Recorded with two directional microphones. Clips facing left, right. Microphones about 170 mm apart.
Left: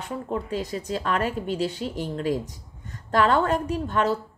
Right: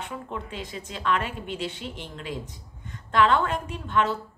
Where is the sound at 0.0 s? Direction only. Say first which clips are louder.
Left 5 dB; 35° left (ahead or behind).